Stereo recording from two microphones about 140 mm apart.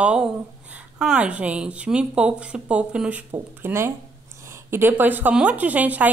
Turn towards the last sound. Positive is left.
turn(degrees=-10)  # may be behind; listen again after turning